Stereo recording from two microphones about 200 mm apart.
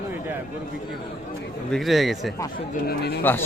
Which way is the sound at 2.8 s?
55° left (ahead or behind).